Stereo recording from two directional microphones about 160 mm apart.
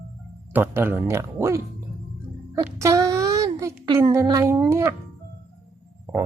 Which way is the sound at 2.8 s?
20° right (ahead or behind).